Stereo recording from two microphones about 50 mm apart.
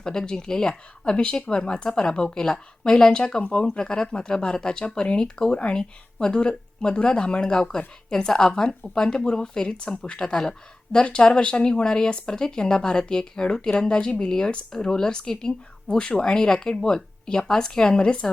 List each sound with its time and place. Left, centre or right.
0.0 s speech: centre